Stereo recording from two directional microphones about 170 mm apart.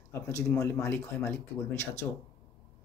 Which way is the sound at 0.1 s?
10° left (ahead or behind).